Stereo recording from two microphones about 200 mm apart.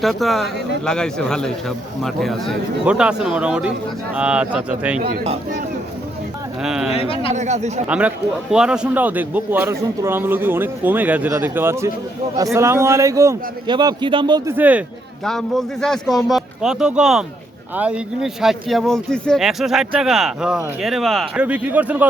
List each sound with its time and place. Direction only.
0.0 s speech: centre (ahead or behind)
4.9 s speech: 35° right (ahead or behind)
6.6 s speech: 5° right (ahead or behind)
6.9 s a man's voice: 30° left (ahead or behind)
7.3 s speech: 35° right (ahead or behind)
7.9 s a man's voice: 5° right (ahead or behind)
14.5 s a man's voice: 10° right (ahead or behind)